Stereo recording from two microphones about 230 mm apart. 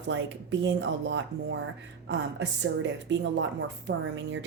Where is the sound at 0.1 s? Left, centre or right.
Right.